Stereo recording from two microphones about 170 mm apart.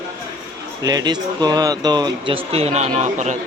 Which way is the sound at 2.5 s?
40° right (ahead or behind).